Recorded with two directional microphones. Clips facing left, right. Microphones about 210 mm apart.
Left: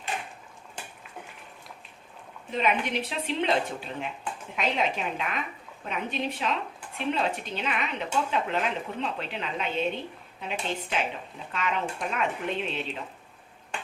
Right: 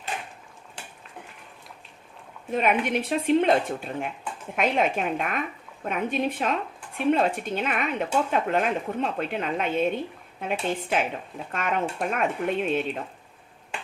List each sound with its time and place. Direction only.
2.5 s speech: 50° right (ahead or behind)